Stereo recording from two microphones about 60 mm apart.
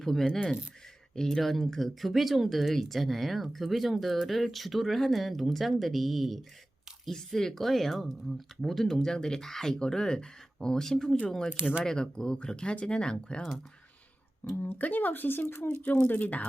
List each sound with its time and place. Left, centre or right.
0.0 s speech: centre
14.6 s speech: left